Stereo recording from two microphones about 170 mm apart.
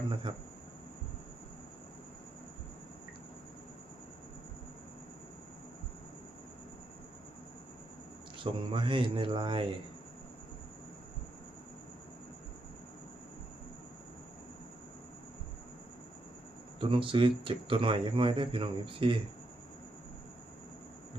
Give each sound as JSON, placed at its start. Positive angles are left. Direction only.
{"t": 0.1, "sound": "speech", "side_deg": -30}
{"t": 8.4, "sound": "speech", "side_deg": -30}
{"t": 16.8, "sound": "speech", "side_deg": -30}